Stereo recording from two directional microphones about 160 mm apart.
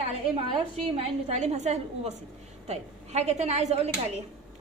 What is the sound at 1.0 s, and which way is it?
A woman's voice, 45° right (ahead or behind).